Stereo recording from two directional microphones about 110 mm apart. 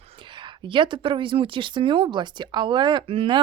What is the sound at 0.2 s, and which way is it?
Speech, 45° right (ahead or behind).